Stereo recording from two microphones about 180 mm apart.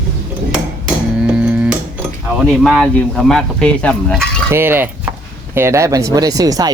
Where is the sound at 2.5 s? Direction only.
5° left (ahead or behind).